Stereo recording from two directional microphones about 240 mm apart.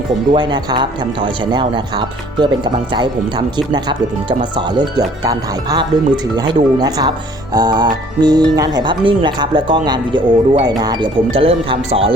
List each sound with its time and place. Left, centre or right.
0.3 s speech: centre